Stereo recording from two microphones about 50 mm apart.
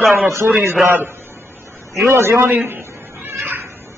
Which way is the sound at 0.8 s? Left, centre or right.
Right.